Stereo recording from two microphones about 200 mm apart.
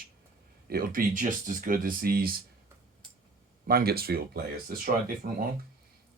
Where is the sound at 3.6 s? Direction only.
50° right (ahead or behind).